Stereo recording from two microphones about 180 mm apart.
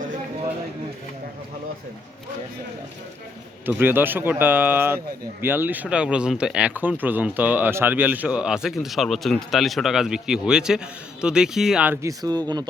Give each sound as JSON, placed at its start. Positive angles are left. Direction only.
{"t": 3.7, "sound": "speech", "side_deg": -10}
{"t": 12.0, "sound": "speech", "side_deg": -20}